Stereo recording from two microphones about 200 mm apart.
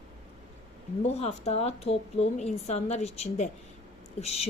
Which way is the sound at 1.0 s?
30° left (ahead or behind).